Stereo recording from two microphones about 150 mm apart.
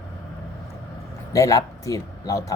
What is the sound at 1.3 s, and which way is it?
Speech, 20° left (ahead or behind).